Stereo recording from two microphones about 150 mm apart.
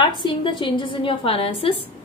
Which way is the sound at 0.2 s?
35° left (ahead or behind).